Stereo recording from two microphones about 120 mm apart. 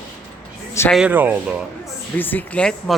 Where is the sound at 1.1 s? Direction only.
15° right (ahead or behind).